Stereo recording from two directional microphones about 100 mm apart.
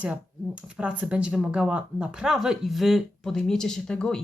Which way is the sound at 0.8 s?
10° right (ahead or behind).